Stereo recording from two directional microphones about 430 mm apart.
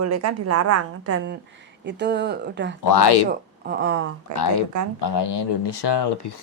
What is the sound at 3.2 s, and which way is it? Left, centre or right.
Speech, right.